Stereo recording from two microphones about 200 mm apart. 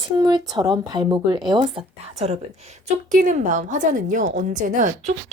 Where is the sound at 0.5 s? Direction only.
20° right (ahead or behind).